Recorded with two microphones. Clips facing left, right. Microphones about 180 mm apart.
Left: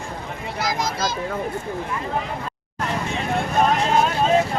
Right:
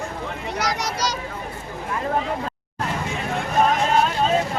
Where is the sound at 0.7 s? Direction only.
70° right (ahead or behind).